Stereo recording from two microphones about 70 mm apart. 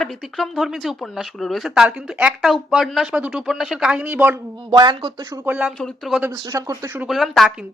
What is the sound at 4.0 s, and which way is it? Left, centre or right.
Speech, right.